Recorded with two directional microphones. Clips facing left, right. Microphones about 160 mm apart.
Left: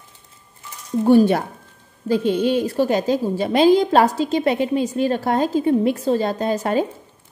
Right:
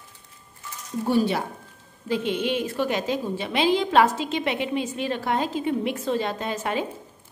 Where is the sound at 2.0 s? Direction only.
35° left (ahead or behind).